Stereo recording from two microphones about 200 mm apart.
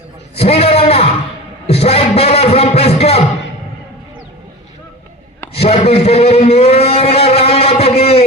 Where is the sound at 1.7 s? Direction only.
30° left (ahead or behind).